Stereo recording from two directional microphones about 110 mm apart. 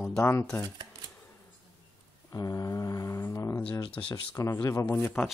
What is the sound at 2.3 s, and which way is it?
Mantra, 30° left (ahead or behind).